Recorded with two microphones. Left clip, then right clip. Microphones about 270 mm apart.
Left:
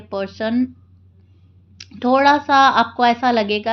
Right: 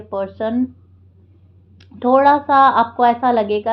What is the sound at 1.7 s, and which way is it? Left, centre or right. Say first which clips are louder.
A woman's voice: right 2 dB; left.